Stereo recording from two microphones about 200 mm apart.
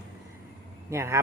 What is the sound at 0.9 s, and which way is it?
Speech, 15° right (ahead or behind).